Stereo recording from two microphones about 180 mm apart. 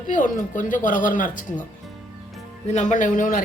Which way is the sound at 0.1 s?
45° left (ahead or behind).